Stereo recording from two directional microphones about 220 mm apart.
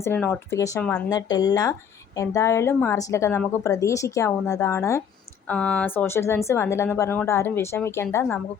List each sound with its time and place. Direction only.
0.0 s a woman's voice: 10° left (ahead or behind)